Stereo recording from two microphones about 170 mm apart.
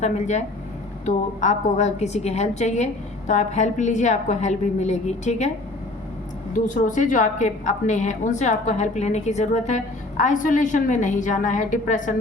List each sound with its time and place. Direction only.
0.0 s a woman's voice: 40° left (ahead or behind)
6.7 s a woman's voice: 50° left (ahead or behind)